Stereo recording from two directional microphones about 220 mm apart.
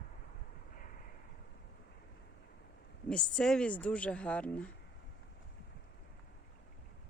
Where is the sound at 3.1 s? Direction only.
5° left (ahead or behind).